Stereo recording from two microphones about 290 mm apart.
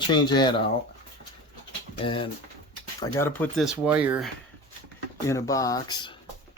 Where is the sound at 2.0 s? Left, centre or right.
Centre.